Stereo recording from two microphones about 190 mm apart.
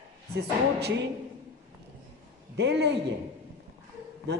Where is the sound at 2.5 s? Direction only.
65° right (ahead or behind).